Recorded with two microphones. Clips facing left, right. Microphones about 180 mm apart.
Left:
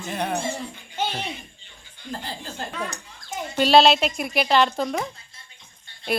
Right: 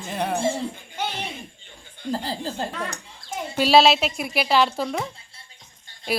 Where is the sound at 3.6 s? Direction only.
5° right (ahead or behind).